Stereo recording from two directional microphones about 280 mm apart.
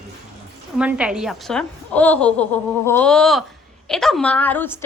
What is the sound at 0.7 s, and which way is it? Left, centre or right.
A woman's voice, centre.